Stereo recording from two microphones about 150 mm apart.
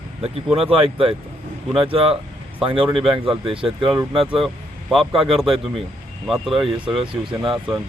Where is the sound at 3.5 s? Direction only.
35° right (ahead or behind).